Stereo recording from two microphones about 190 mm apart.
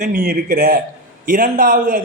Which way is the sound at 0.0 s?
55° right (ahead or behind).